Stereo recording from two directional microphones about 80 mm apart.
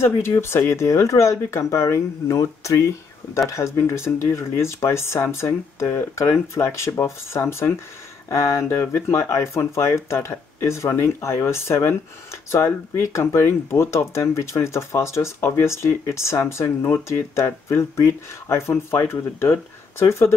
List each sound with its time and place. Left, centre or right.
0.4 s speech: left